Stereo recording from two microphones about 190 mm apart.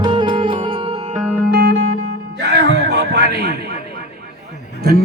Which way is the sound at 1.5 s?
60° right (ahead or behind).